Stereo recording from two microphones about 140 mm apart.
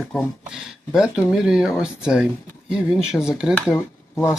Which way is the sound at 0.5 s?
5° right (ahead or behind).